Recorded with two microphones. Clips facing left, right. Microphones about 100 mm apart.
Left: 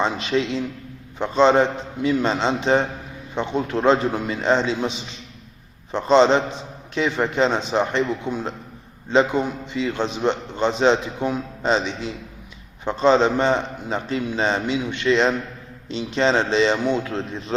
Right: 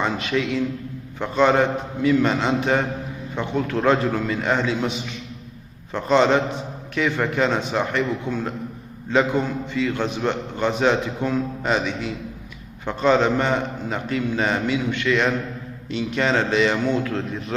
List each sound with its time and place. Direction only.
0.0 s a man's voice: 25° left (ahead or behind)